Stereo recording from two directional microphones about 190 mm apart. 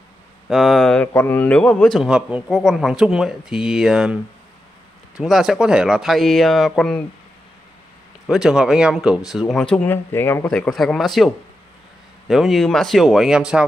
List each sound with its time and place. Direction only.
0.5 s speech: centre (ahead or behind)
5.2 s speech: centre (ahead or behind)
8.3 s speech: 5° right (ahead or behind)